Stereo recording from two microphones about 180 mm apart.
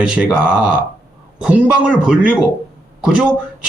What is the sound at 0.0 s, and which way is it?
Speech, 5° right (ahead or behind).